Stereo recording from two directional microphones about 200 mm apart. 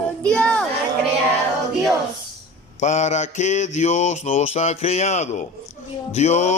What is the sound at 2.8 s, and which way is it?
Music, 35° left (ahead or behind).